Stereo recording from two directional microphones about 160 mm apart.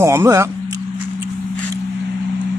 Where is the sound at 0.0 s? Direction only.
15° right (ahead or behind).